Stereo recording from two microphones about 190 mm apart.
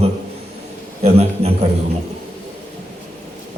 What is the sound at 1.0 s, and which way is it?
Speech, 35° right (ahead or behind).